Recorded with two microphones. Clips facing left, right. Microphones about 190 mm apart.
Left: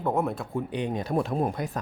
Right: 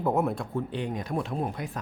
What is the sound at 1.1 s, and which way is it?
Speech, 45° left (ahead or behind).